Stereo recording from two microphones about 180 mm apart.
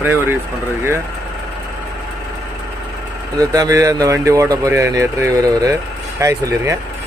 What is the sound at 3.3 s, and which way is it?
Speech, 20° right (ahead or behind).